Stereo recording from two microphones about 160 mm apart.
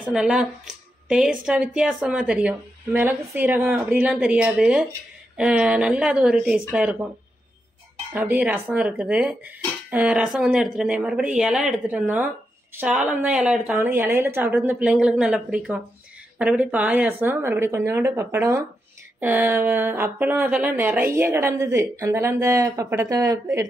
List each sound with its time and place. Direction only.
0.0 s a woman's voice: 5° right (ahead or behind)
8.1 s speech: 10° right (ahead or behind)